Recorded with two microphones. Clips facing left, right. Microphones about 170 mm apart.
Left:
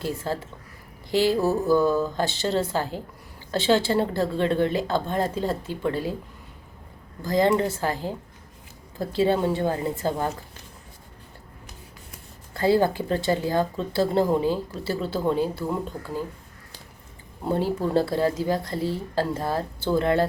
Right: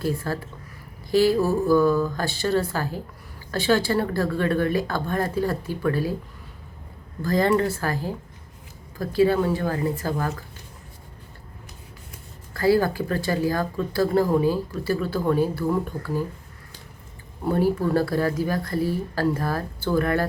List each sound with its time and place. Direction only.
0.3 s speech: 20° left (ahead or behind)
7.2 s speech: 20° left (ahead or behind)
12.5 s speech: 25° left (ahead or behind)
17.5 s speech: 20° left (ahead or behind)